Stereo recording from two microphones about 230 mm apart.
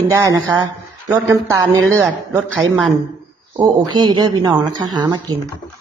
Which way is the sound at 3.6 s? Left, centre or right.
Centre.